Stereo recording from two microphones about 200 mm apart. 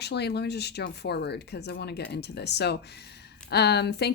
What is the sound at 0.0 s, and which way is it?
Speech, 55° left (ahead or behind).